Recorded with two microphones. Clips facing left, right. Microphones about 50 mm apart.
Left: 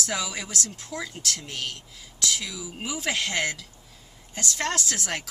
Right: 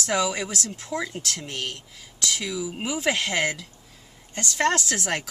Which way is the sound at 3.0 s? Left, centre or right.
Right.